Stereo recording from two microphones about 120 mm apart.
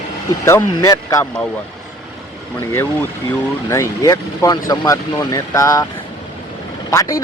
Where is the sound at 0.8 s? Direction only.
30° left (ahead or behind).